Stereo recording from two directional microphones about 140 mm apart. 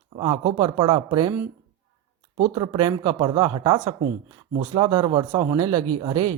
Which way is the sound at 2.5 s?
35° right (ahead or behind).